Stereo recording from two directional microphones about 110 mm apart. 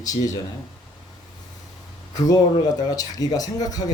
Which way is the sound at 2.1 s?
35° left (ahead or behind).